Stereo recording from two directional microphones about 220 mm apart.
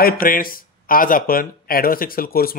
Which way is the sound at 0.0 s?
40° left (ahead or behind).